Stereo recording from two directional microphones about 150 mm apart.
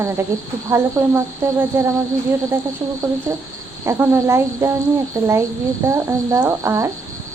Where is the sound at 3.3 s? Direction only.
15° right (ahead or behind).